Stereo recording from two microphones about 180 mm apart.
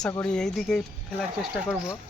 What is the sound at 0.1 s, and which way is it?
Speech, 5° left (ahead or behind).